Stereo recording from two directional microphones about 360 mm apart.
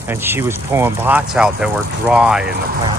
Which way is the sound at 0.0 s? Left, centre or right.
Centre.